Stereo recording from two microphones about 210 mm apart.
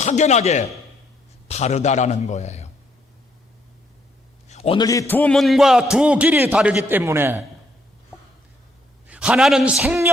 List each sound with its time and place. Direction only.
0.0 s a man's voice: 35° left (ahead or behind)
4.4 s a man's voice: 30° left (ahead or behind); by 7.4 s 10° right (ahead or behind)
9.0 s a man's voice: 5° right (ahead or behind)